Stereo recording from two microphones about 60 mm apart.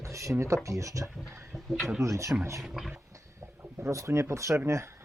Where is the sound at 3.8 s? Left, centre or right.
Right.